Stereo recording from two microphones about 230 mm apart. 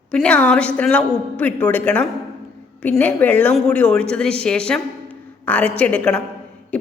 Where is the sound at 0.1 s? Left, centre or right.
Centre.